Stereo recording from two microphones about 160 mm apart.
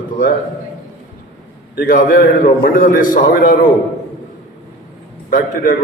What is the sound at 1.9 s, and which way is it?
A man's voice, 60° left (ahead or behind).